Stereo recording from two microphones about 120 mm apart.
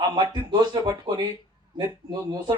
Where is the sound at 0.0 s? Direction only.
40° right (ahead or behind).